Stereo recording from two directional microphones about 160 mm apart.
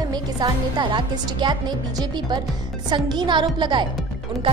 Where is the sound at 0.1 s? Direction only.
25° right (ahead or behind).